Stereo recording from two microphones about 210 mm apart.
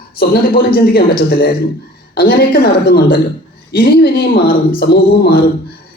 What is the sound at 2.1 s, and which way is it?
A man's voice, 45° left (ahead or behind).